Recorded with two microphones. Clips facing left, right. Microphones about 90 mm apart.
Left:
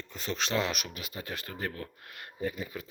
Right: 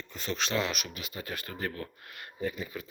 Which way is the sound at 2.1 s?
30° left (ahead or behind).